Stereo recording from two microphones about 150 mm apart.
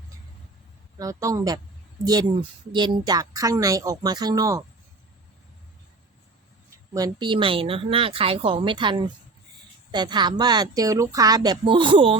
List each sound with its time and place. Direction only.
0.9 s a woman's voice: 25° right (ahead or behind)
6.9 s a woman's voice: 25° right (ahead or behind)